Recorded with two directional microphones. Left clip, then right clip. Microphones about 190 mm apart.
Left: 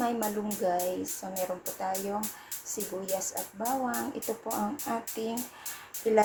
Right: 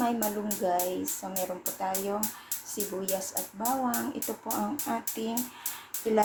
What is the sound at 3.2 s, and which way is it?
Speech, centre (ahead or behind).